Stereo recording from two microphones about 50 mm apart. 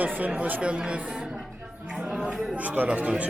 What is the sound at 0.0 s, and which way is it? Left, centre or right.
Speech, right.